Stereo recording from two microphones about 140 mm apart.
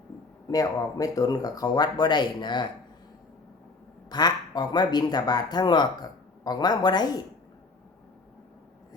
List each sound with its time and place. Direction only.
0.4 s speech: 25° left (ahead or behind)
4.1 s speech: 30° left (ahead or behind)